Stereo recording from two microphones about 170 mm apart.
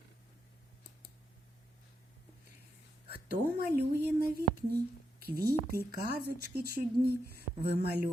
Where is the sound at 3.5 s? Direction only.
65° right (ahead or behind).